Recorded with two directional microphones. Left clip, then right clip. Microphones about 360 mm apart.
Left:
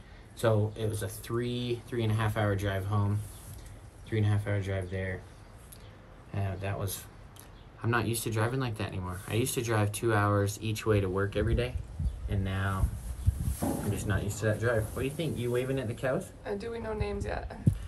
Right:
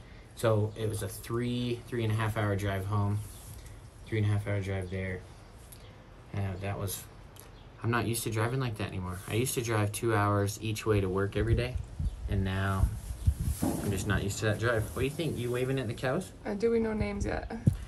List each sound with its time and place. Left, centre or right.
0.4 s speech: centre
6.3 s speech: centre
16.4 s speech: right